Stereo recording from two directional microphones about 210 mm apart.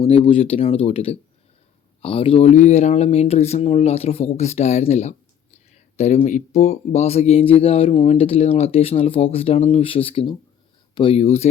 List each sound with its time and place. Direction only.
0.0 s speech: 25° left (ahead or behind)